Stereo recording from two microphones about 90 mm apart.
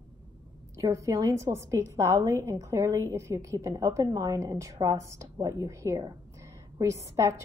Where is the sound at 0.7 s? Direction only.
35° right (ahead or behind).